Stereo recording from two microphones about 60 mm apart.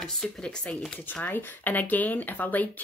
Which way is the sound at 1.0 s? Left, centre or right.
Left.